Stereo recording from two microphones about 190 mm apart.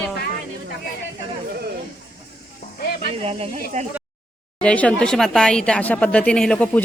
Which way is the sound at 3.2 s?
30° right (ahead or behind).